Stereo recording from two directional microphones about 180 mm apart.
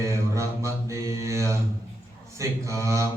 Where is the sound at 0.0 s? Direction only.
15° right (ahead or behind).